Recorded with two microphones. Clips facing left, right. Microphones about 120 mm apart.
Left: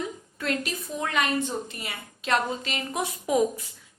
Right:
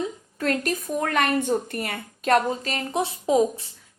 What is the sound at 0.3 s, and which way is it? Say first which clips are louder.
A woman's voice: right 5 dB; 40° right (ahead or behind).